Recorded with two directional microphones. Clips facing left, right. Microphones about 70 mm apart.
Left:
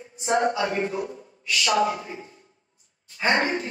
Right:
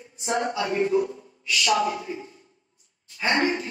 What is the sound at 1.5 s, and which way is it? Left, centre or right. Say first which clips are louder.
Speech: left 1 dB; left.